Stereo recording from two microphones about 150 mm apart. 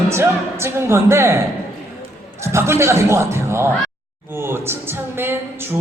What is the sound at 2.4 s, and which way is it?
Speech, 20° right (ahead or behind).